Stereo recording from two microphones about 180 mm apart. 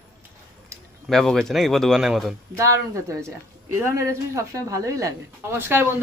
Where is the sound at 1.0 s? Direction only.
Centre (ahead or behind).